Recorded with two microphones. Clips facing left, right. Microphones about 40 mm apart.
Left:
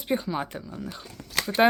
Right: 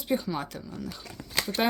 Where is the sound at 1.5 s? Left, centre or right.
Left.